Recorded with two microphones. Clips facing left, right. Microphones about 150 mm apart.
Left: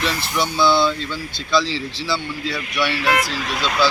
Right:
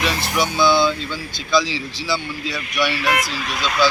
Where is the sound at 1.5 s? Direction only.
25° left (ahead or behind).